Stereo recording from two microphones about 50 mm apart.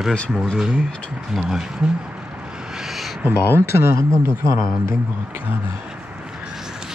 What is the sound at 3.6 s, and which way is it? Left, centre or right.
Speech, right.